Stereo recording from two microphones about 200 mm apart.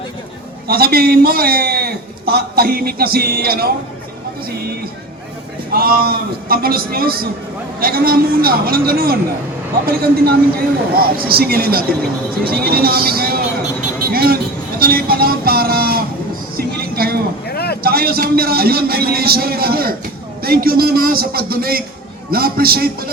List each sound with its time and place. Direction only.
0.7 s a man's voice: 50° right (ahead or behind)
5.7 s a man's voice: 45° right (ahead or behind)
14.8 s music: 50° right (ahead or behind)
16.6 s vehicle: 50° right (ahead or behind)
17.4 s vehicle: 50° left (ahead or behind)
17.8 s a man's voice: 50° right (ahead or behind)